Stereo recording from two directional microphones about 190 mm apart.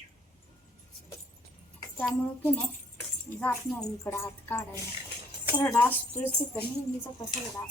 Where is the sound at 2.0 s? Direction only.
10° left (ahead or behind).